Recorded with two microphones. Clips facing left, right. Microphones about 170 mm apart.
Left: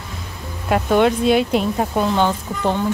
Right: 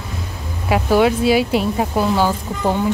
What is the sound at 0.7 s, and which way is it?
Speech, 5° right (ahead or behind).